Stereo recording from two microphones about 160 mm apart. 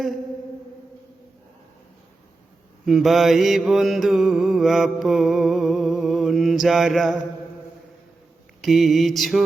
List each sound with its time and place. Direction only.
2.8 s mantra: centre (ahead or behind)
8.6 s mantra: centre (ahead or behind)